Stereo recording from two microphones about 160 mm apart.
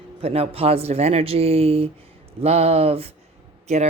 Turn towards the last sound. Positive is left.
turn(degrees=-45)  # may be behind; listen again after turning